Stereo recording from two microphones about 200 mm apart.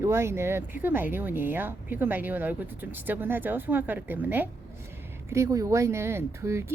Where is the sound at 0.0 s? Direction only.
15° right (ahead or behind).